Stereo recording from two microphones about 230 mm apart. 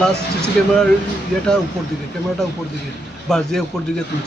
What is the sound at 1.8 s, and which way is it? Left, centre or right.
Speech, centre.